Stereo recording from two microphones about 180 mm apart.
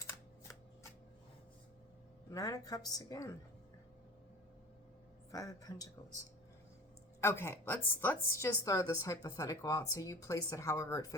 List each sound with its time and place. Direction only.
2.3 s a woman's voice: 20° left (ahead or behind)
5.3 s a woman's voice: 20° left (ahead or behind)
7.2 s a woman's voice: 15° left (ahead or behind)